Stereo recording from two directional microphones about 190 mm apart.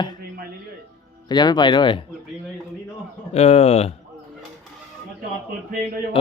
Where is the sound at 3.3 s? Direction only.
35° left (ahead or behind).